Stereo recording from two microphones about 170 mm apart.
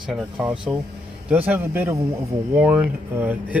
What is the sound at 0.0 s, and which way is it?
Speech, 5° right (ahead or behind).